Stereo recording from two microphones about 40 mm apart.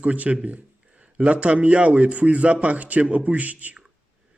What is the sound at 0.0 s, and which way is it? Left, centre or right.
A man's voice, right.